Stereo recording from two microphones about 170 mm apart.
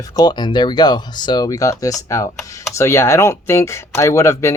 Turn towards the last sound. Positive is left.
turn(degrees=15)  # may be behind; listen again after turning